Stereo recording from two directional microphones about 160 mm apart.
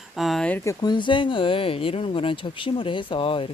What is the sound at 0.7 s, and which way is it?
Speech, 25° left (ahead or behind).